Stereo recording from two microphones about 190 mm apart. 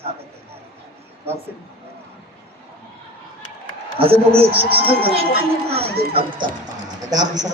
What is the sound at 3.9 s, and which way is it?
Speech, 30° right (ahead or behind).